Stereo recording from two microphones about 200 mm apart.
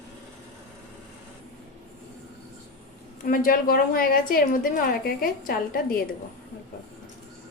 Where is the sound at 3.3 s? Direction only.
45° left (ahead or behind).